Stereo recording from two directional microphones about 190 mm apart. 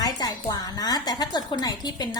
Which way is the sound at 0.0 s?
20° left (ahead or behind).